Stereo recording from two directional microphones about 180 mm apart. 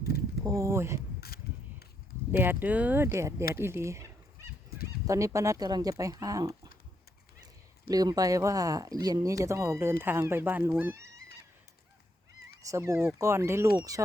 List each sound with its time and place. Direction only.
0.4 s speech: 15° right (ahead or behind)
2.3 s speech: 10° right (ahead or behind)
5.0 s speech: 20° right (ahead or behind)
12.6 s speech: 15° right (ahead or behind)